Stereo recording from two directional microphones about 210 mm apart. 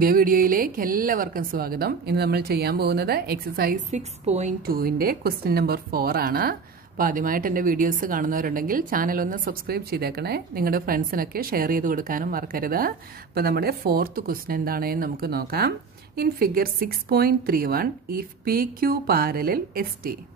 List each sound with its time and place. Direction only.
0.0 s speech: 45° right (ahead or behind)